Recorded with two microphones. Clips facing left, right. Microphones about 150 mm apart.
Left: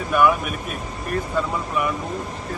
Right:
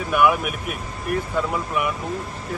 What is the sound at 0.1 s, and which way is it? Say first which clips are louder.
Speech: even; 15° right (ahead or behind).